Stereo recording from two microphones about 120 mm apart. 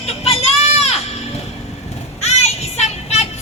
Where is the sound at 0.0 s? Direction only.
60° left (ahead or behind).